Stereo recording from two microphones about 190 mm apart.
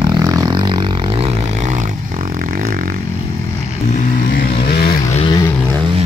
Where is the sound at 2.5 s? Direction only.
50° right (ahead or behind).